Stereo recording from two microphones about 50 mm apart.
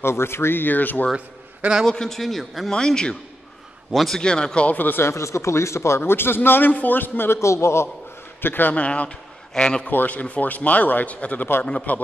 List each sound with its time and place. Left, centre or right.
0.0 s speech: left
1.9 s a man's voice: centre
2.7 s a man's voice: centre
3.9 s a man's voice: centre
4.2 s a man's voice: centre
4.6 s speech: left
5.0 s a man's voice: left
7.3 s a man's voice: left
8.4 s speech: left
8.7 s a man's voice: left
9.8 s speech: left